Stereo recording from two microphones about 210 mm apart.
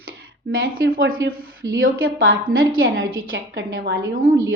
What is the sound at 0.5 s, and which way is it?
A woman's voice, 70° right (ahead or behind).